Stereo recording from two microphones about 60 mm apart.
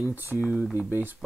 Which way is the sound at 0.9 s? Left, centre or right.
Right.